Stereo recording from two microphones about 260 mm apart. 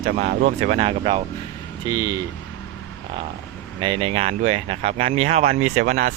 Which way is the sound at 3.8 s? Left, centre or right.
Right.